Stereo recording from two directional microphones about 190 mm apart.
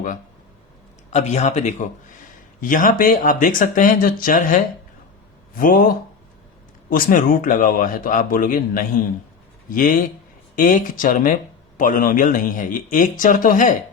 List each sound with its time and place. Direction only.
1.1 s a man's voice: 35° left (ahead or behind)
6.9 s a man's voice: 45° left (ahead or behind)